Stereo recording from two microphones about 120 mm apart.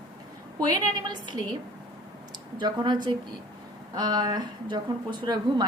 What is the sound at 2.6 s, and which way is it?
A woman's voice, 40° right (ahead or behind).